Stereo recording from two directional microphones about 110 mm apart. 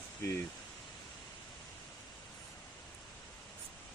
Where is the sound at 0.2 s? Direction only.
25° left (ahead or behind).